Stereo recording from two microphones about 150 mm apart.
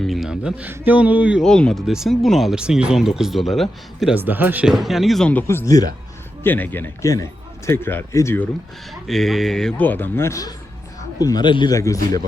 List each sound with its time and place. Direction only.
0.0 s speech: centre (ahead or behind)
1.5 s speech: 5° left (ahead or behind)
4.2 s speech: 15° right (ahead or behind); by 5.9 s 25° left (ahead or behind)
6.4 s a man's voice: 15° left (ahead or behind)
9.0 s a man's voice: centre (ahead or behind); by 11.9 s 20° left (ahead or behind)